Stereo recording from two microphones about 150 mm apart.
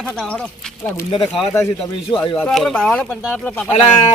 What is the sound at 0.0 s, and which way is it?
Speech, 5° left (ahead or behind).